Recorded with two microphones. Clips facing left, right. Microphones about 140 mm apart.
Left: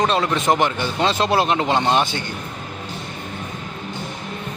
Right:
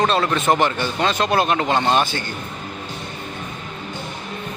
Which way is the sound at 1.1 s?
25° left (ahead or behind).